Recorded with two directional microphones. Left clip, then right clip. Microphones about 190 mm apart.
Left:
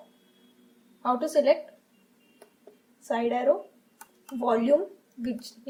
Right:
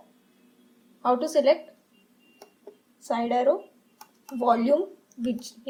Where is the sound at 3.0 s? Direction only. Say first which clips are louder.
Right 2 dB; 30° right (ahead or behind).